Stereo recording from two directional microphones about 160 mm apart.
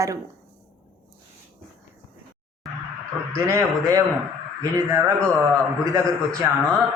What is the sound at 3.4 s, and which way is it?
Speech, 20° right (ahead or behind).